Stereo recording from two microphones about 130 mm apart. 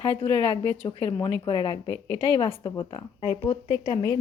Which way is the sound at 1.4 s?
35° left (ahead or behind).